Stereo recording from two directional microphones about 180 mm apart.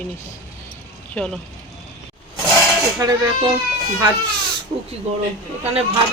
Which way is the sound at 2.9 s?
20° right (ahead or behind).